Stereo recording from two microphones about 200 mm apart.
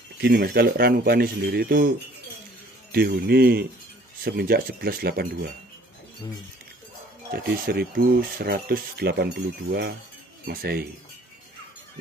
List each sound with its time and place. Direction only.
0.2 s speech: 50° right (ahead or behind)
2.9 s speech: 50° right (ahead or behind)
7.2 s speech: 50° right (ahead or behind)